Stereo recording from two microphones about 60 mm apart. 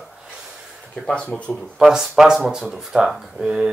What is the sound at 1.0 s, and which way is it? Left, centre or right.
Speech, centre.